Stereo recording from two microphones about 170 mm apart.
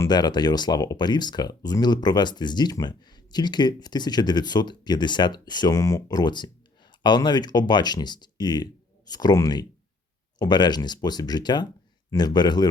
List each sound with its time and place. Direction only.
0.0 s speech: 25° left (ahead or behind)